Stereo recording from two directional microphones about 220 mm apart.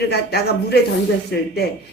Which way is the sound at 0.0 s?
45° left (ahead or behind).